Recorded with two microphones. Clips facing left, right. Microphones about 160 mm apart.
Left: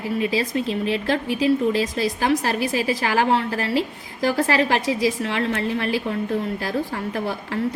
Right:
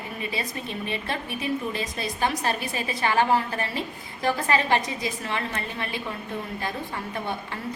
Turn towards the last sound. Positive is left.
turn(degrees=85)